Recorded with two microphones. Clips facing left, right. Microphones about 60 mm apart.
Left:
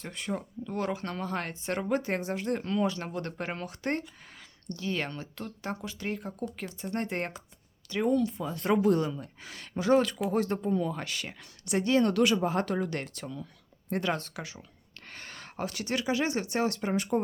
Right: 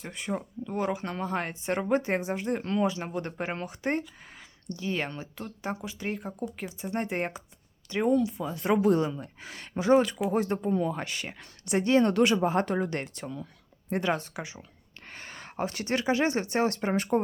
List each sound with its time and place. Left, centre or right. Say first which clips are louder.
0.0 s speech: right 1 dB; centre
8.2 s speech: right 1 dB; centre; by 13.5 s right
13.9 s speech: right 2 dB; centre; by 17.2 s right